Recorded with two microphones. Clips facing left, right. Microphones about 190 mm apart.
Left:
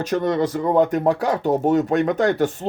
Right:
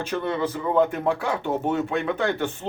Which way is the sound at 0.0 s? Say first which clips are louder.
Left 5 dB; 40° left (ahead or behind).